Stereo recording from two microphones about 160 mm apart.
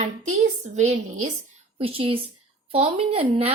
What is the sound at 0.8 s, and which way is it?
Speech, 50° right (ahead or behind).